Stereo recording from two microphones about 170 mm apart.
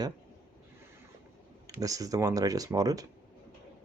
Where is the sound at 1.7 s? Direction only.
20° right (ahead or behind).